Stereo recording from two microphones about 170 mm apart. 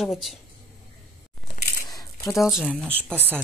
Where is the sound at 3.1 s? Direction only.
10° right (ahead or behind).